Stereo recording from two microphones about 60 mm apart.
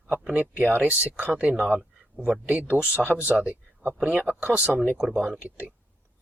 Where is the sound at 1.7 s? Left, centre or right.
Right.